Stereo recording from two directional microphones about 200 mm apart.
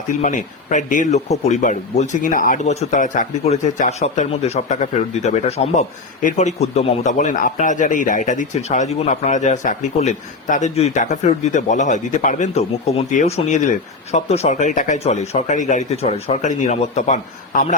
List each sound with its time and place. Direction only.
0.2 s speech: 35° left (ahead or behind)